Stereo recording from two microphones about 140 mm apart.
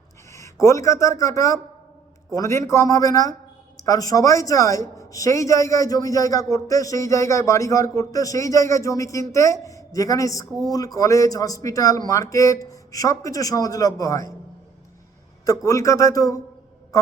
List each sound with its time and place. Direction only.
0.3 s a sound: 20° left (ahead or behind)
0.6 s a woman's voice: 20° left (ahead or behind)
15.4 s a woman's voice: 25° left (ahead or behind)
16.9 s quack: 25° left (ahead or behind)